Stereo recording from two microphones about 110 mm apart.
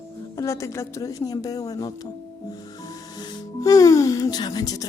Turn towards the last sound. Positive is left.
turn(degrees=35)  # may be behind; listen again after turning